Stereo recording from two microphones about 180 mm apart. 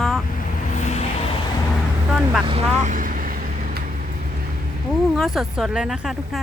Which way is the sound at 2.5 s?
35° right (ahead or behind).